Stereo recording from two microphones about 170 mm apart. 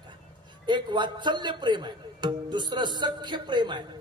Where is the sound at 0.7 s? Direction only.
25° right (ahead or behind).